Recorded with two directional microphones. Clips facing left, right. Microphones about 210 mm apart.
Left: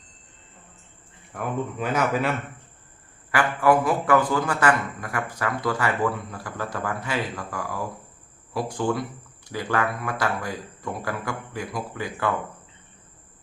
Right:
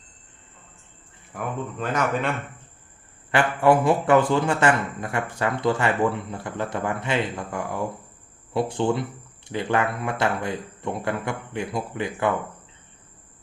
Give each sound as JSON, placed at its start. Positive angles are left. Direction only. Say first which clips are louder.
{"t": 1.3, "sound": "speech", "louder": "left 2 dB", "side_deg": -5}
{"t": 3.3, "sound": "a man's voice", "louder": "right 1 dB", "side_deg": -25}